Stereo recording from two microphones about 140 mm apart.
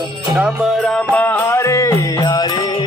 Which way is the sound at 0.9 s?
10° left (ahead or behind).